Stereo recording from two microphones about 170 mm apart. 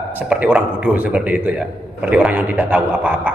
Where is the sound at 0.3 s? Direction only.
5° right (ahead or behind).